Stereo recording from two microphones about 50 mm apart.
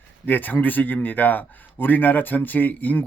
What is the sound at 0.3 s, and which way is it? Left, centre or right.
A man's voice, left.